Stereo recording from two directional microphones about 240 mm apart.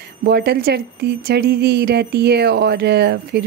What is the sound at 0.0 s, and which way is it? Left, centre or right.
A woman's voice, right.